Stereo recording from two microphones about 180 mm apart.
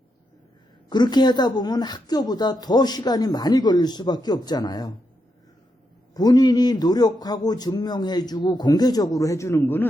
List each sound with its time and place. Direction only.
0.9 s a man's voice: 25° left (ahead or behind)
6.1 s a man's voice: 20° left (ahead or behind)